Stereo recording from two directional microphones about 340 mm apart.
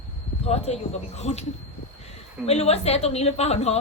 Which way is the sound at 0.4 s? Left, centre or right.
Centre.